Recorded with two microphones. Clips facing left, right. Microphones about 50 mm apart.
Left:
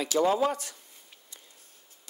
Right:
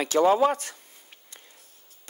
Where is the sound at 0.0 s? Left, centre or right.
Right.